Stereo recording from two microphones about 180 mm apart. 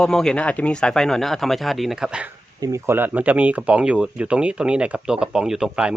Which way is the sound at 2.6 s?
15° right (ahead or behind).